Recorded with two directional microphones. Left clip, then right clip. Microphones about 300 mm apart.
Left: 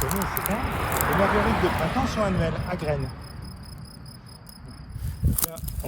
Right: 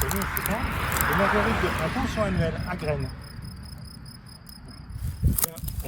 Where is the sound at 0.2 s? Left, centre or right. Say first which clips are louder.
Left 1 dB; left.